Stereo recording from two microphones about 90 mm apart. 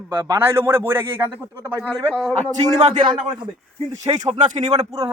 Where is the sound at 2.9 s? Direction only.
65° right (ahead or behind).